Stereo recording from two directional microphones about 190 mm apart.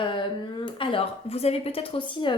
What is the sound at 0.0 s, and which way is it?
A woman's voice, 25° left (ahead or behind).